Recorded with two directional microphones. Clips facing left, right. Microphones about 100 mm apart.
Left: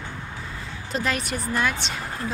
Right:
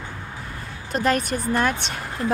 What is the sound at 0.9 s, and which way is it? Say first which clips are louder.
A woman's voice: right 5 dB; 45° right (ahead or behind).